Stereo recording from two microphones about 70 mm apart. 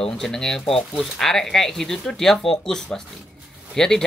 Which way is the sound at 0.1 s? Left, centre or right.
Centre.